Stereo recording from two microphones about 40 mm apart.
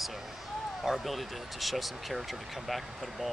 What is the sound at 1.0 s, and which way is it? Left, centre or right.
Speech, centre.